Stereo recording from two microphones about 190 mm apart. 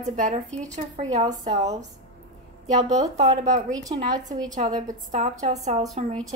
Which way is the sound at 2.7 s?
35° right (ahead or behind).